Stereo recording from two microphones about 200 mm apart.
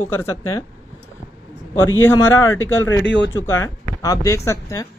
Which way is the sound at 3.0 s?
60° left (ahead or behind).